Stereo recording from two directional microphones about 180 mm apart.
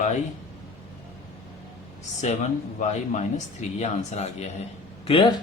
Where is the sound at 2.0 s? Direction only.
40° left (ahead or behind).